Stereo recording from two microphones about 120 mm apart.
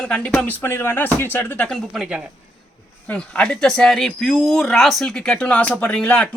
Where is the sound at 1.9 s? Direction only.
10° right (ahead or behind).